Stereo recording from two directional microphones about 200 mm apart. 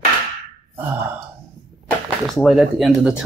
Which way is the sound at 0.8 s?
10° right (ahead or behind).